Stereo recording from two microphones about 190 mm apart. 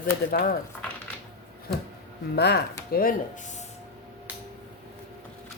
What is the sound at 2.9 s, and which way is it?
Speech, 50° left (ahead or behind).